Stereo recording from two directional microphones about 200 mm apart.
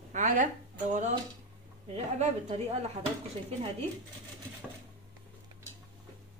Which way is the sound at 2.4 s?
30° right (ahead or behind).